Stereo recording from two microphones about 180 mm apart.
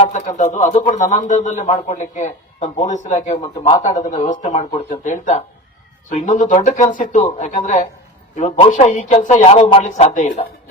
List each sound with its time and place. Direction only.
0.0 s speech: 40° left (ahead or behind)
3.4 s speech: 20° left (ahead or behind)
4.1 s speech: 45° left (ahead or behind)